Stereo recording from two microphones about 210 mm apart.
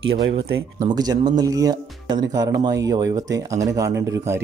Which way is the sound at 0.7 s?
20° right (ahead or behind).